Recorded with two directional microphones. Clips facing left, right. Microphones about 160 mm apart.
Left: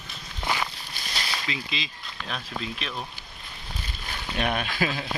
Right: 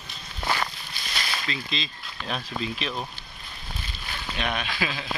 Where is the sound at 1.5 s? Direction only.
10° left (ahead or behind).